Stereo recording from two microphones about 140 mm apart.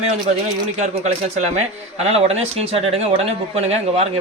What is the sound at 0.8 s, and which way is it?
A man's voice, 55° right (ahead or behind).